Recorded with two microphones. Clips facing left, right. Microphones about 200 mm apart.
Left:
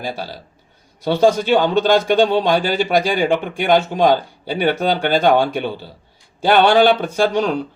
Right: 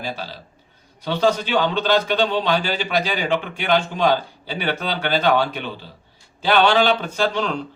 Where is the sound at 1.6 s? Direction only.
45° left (ahead or behind).